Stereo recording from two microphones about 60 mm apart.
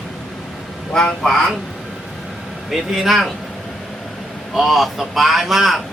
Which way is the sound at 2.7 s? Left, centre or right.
Centre.